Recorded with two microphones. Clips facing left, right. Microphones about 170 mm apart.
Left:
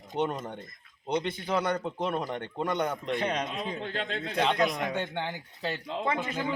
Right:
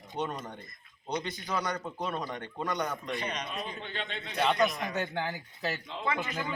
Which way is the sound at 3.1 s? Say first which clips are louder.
Left 5 dB; 60° left (ahead or behind).